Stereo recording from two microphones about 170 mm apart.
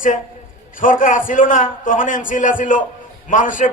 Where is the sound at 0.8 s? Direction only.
50° left (ahead or behind).